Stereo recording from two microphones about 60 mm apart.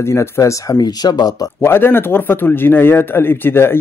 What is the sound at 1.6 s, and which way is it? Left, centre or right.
Speech, left.